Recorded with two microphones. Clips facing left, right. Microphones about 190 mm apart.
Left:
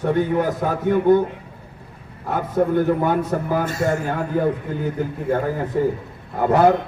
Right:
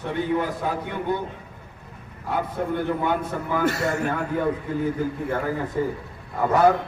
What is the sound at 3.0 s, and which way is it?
Speech, 40° left (ahead or behind).